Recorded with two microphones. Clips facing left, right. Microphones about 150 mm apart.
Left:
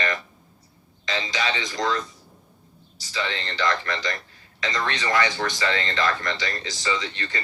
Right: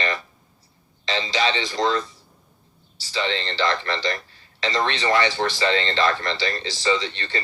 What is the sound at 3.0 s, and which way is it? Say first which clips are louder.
Speech: right 4 dB; 30° right (ahead or behind).